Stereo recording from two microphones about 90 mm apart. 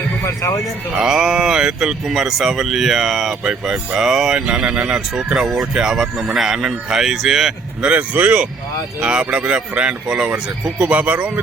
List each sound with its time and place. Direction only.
0.3 s speech: 40° left (ahead or behind)
0.9 s speech: 5° right (ahead or behind)